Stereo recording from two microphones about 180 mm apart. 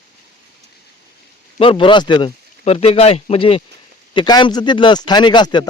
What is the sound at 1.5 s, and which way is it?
Speech, 30° left (ahead or behind).